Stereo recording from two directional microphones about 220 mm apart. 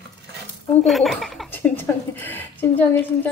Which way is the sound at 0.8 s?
Centre (ahead or behind).